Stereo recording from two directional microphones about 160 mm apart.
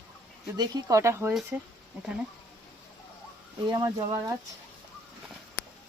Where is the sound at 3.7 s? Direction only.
25° right (ahead or behind).